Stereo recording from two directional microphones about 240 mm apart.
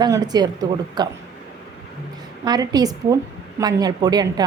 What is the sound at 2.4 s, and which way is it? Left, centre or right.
A woman's voice, centre.